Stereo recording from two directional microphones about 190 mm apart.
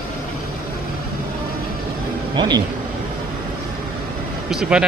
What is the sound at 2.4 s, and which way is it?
Speech, 20° right (ahead or behind).